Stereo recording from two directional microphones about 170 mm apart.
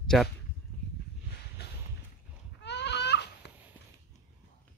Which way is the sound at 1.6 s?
75° left (ahead or behind).